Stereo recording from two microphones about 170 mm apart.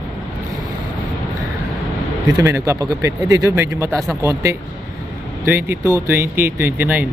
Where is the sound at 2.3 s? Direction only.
20° right (ahead or behind).